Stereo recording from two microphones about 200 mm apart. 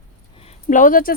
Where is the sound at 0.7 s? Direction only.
45° left (ahead or behind).